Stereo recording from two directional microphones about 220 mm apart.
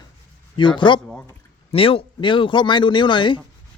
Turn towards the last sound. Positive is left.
turn(degrees=20)  # may be behind; listen again after turning